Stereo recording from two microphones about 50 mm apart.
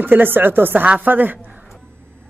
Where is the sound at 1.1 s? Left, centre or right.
Right.